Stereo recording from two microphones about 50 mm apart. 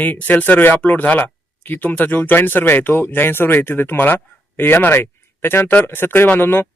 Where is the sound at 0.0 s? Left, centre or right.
Left.